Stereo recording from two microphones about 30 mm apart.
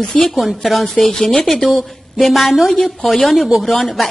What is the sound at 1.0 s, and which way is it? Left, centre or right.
A woman's voice, centre.